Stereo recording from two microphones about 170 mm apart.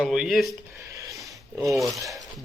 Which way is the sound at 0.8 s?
20° right (ahead or behind).